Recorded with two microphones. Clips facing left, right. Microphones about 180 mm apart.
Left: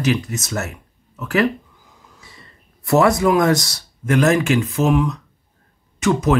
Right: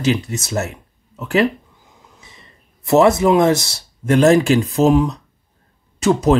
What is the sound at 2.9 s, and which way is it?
Speech, 25° right (ahead or behind).